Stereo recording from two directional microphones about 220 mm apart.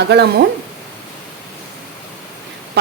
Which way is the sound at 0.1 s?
50° right (ahead or behind).